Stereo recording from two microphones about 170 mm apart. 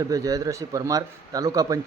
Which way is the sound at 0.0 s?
20° right (ahead or behind).